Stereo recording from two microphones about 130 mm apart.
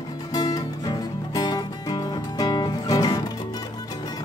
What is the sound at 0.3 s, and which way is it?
Music, 30° left (ahead or behind).